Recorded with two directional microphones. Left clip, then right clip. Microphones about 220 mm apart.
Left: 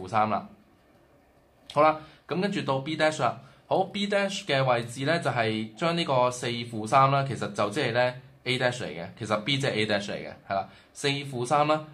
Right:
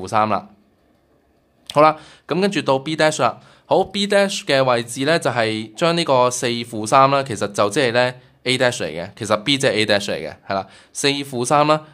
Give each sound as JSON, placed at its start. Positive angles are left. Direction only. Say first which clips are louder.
{"t": 0.0, "sound": "speech", "louder": "right 7 dB", "side_deg": -50}
{"t": 1.7, "sound": "speech", "louder": "right 8 dB", "side_deg": -50}